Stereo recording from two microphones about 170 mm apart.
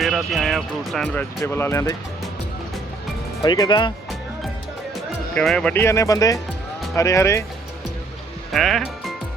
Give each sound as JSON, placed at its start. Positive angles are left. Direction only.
{"t": 0.0, "sound": "speech", "side_deg": 0}
{"t": 3.4, "sound": "speech", "side_deg": 25}
{"t": 5.3, "sound": "speech", "side_deg": 5}
{"t": 8.5, "sound": "speech", "side_deg": 0}